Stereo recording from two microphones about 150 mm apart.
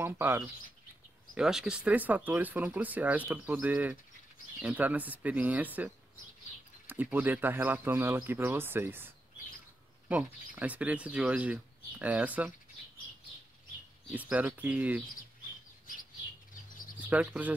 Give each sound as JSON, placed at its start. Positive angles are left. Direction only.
{"t": 0.0, "sound": "speech", "side_deg": -15}
{"t": 1.3, "sound": "speech", "side_deg": -5}
{"t": 6.9, "sound": "speech", "side_deg": -10}
{"t": 14.1, "sound": "speech", "side_deg": -10}
{"t": 17.1, "sound": "speech", "side_deg": -10}